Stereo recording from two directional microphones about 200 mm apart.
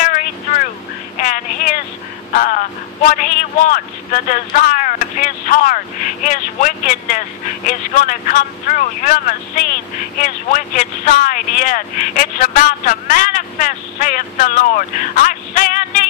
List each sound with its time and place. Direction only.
1.2 s vehicle: 40° left (ahead or behind)
2.3 s speech: 45° left (ahead or behind)